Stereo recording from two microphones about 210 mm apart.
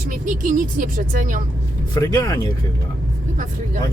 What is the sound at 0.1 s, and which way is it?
Speech, 40° right (ahead or behind).